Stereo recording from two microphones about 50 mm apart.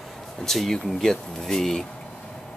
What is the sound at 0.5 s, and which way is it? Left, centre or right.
Speech, centre.